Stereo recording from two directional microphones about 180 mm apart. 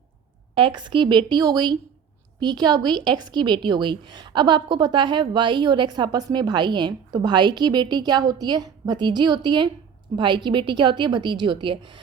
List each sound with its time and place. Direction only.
0.5 s a woman's voice: 25° right (ahead or behind)